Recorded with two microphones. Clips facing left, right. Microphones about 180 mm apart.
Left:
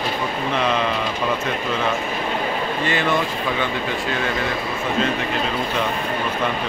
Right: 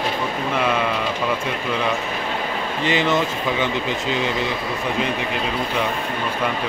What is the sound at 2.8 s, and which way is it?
Speech, 20° right (ahead or behind).